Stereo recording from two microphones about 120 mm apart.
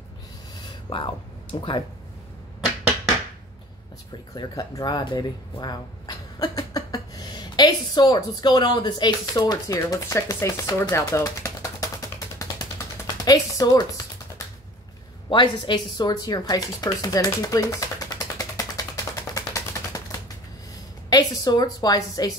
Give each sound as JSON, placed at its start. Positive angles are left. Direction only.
{"t": 0.8, "sound": "speech", "side_deg": 50}
{"t": 4.3, "sound": "speech", "side_deg": 30}
{"t": 12.0, "sound": "a sound", "side_deg": 30}
{"t": 15.2, "sound": "speech", "side_deg": 40}
{"t": 18.4, "sound": "a sound", "side_deg": 30}
{"t": 19.3, "sound": "typewriter", "side_deg": 25}
{"t": 21.1, "sound": "speech", "side_deg": 35}